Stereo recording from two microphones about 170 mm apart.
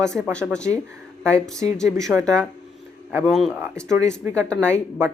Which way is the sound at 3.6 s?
15° right (ahead or behind).